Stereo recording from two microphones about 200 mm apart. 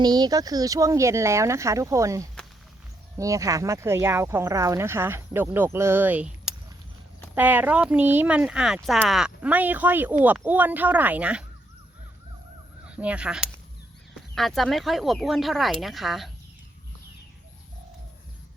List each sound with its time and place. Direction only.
0.0 s speech: 20° right (ahead or behind)
12.8 s speech: 5° right (ahead or behind)